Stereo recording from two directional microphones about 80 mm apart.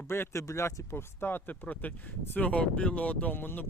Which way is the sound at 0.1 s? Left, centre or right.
Left.